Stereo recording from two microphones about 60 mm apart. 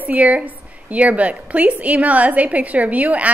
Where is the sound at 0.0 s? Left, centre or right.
Right.